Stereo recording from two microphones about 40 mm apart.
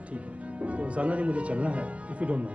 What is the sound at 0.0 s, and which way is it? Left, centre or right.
Music, right.